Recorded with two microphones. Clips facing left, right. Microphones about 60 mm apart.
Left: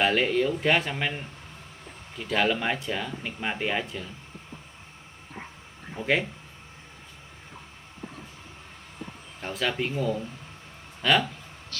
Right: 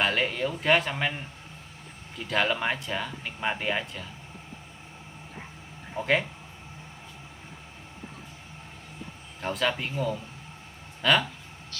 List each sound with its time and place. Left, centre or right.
0.0 s speech: centre
9.4 s speech: centre
11.7 s speech: left